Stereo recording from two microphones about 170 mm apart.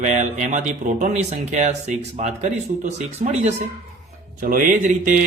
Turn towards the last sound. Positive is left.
turn(degrees=-50)  # may be behind; listen again after turning